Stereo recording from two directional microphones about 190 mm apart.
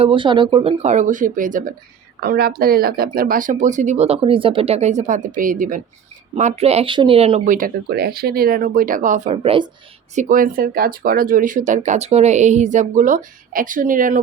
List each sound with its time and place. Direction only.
0.0 s speech: 25° right (ahead or behind); by 5.8 s 45° right (ahead or behind)
6.3 s speech: 35° right (ahead or behind)
10.2 s speech: 45° right (ahead or behind)